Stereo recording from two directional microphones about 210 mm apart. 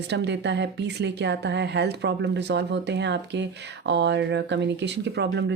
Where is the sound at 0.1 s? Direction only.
55° right (ahead or behind).